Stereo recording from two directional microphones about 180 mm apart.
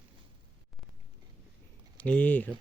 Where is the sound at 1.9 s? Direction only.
10° left (ahead or behind).